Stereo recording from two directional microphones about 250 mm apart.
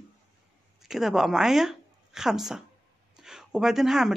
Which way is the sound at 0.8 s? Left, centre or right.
Centre.